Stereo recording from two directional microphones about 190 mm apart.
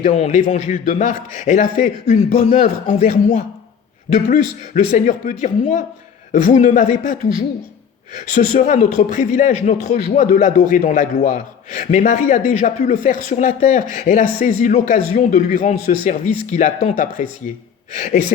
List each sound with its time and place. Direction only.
0.0 s speech: 40° left (ahead or behind)
8.2 s speech: 45° left (ahead or behind)